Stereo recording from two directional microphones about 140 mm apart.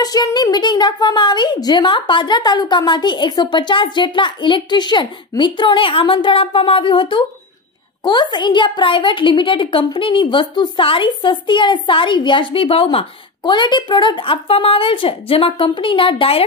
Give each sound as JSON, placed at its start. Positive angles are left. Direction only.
{"t": 0.0, "sound": "a woman's voice", "side_deg": 30}